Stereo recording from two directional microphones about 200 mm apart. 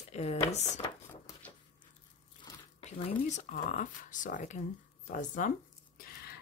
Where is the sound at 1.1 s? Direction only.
10° left (ahead or behind).